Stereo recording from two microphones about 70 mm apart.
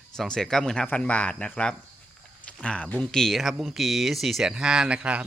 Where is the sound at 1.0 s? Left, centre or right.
Centre.